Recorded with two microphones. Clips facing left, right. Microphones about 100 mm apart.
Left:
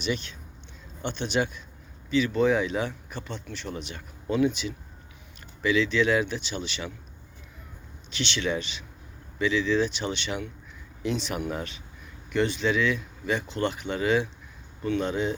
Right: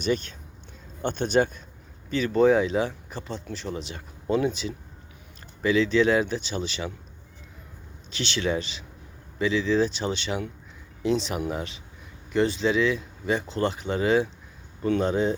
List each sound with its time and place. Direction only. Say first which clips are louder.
0.0 s speech: right 4 dB; 45° right (ahead or behind)
8.1 s speech: right 2 dB; 35° right (ahead or behind)